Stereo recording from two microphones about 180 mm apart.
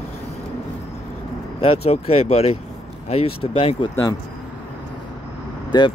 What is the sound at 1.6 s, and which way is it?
Speech, 30° left (ahead or behind).